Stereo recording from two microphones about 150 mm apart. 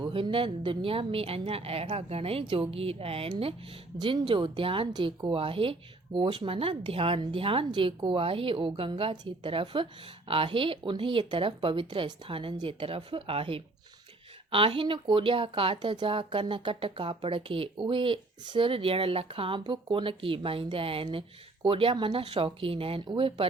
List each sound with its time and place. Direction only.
0.0 s speech: 35° right (ahead or behind)